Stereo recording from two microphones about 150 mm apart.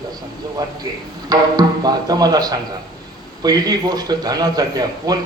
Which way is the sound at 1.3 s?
25° right (ahead or behind).